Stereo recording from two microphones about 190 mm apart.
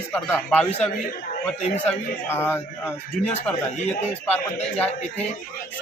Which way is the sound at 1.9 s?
10° left (ahead or behind).